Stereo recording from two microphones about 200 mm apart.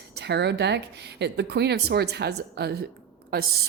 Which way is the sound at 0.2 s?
60° right (ahead or behind).